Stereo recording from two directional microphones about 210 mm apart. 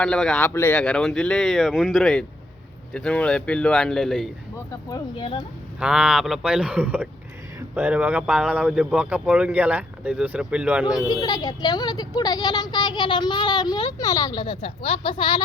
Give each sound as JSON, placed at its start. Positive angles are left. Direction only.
{"t": 0.0, "sound": "speech", "side_deg": 5}
{"t": 4.5, "sound": "speech", "side_deg": 15}
{"t": 5.8, "sound": "speech", "side_deg": -5}
{"t": 11.1, "sound": "speech", "side_deg": 20}